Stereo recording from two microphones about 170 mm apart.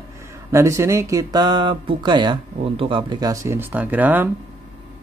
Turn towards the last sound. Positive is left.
turn(degrees=-10)  # may be behind; listen again after turning